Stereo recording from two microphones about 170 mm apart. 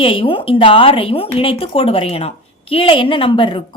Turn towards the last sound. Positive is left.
turn(degrees=30)  # may be behind; listen again after turning